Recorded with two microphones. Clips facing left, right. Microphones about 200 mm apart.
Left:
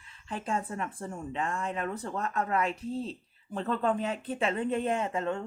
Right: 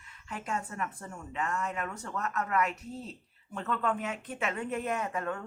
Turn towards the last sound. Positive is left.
turn(degrees=25)  # may be behind; listen again after turning